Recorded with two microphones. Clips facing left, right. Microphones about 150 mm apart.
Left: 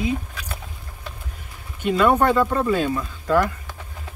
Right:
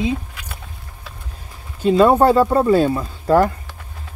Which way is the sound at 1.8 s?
30° right (ahead or behind).